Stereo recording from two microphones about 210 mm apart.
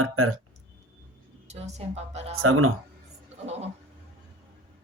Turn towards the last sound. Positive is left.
turn(degrees=-30)  # may be behind; listen again after turning